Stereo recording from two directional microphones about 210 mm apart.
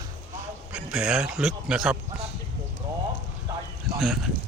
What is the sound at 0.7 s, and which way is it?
A man's voice, 5° right (ahead or behind).